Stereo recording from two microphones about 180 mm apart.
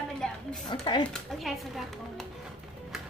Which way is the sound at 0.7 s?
25° left (ahead or behind).